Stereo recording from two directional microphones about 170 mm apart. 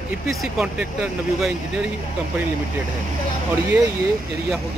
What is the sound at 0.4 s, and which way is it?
Speech, 5° right (ahead or behind).